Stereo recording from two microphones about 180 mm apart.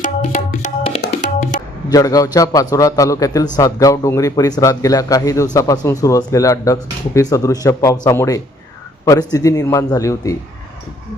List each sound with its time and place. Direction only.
0.2 s tabla: 35° left (ahead or behind)
1.2 s music: 45° left (ahead or behind)
1.9 s a man's voice: 20° left (ahead or behind)